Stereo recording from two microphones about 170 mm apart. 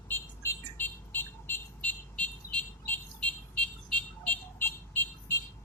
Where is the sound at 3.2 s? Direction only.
10° left (ahead or behind).